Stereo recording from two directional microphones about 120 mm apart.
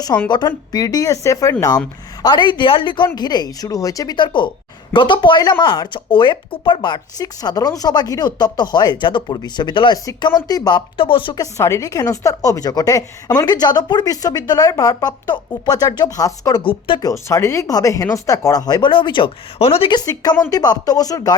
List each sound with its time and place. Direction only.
0.3 s a woman's voice: 40° left (ahead or behind)
2.2 s a woman's voice: 40° left (ahead or behind)
11.3 s a woman's voice: 25° left (ahead or behind)
16.6 s speech: 45° left (ahead or behind)
17.0 s speech: 30° left (ahead or behind); by 19.3 s 45° left (ahead or behind)
19.5 s speech: 55° left (ahead or behind)
19.9 s a woman's voice: 35° left (ahead or behind)